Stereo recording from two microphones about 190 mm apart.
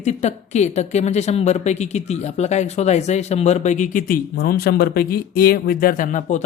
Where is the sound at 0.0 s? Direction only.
35° left (ahead or behind).